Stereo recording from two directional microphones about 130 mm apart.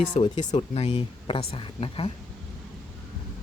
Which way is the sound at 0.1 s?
55° left (ahead or behind).